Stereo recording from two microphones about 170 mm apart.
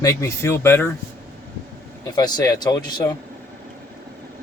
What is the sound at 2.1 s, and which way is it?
Speech, 25° left (ahead or behind).